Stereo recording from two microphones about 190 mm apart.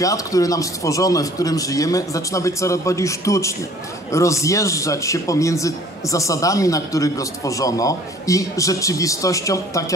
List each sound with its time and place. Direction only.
0.0 s speech: 15° left (ahead or behind)